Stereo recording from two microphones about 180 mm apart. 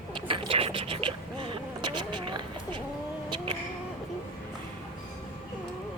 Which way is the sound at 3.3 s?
30° right (ahead or behind).